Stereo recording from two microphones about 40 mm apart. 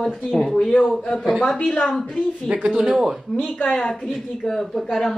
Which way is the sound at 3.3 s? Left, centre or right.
Left.